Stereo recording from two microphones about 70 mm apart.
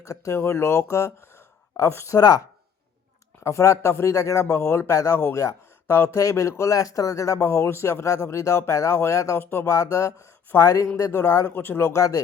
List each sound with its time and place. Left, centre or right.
0.0 s speech: left
2.1 s speech: left
3.4 s speech: left
6.1 s speech: left
9.4 s speech: left
9.6 s speech: left
11.4 s speech: left
11.9 s speech: left